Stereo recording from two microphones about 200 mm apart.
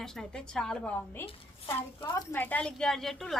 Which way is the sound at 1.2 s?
30° left (ahead or behind).